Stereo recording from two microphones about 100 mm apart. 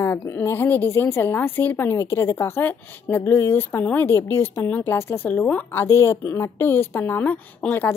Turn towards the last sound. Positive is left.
turn(degrees=15)  # may be behind; listen again after turning